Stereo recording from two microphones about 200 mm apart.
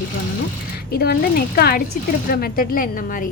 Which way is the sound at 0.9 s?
50° left (ahead or behind).